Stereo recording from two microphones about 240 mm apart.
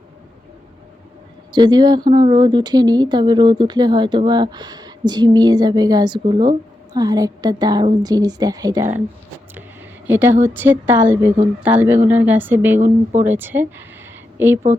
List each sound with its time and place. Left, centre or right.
1.5 s speech: centre
10.1 s speech: centre